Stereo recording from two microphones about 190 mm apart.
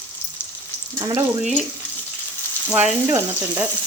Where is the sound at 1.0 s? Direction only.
20° right (ahead or behind).